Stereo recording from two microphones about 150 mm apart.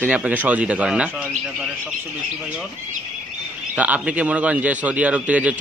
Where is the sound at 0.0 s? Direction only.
10° right (ahead or behind).